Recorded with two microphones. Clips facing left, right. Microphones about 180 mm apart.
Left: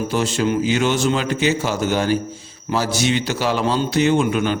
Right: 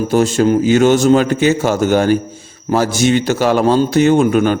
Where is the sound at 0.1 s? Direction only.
45° right (ahead or behind).